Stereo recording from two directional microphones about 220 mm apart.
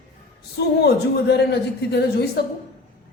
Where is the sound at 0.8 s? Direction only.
50° left (ahead or behind).